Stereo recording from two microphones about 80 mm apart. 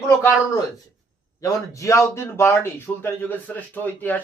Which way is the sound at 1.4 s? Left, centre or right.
Left.